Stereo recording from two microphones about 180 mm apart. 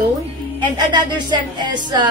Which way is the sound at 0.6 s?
25° right (ahead or behind).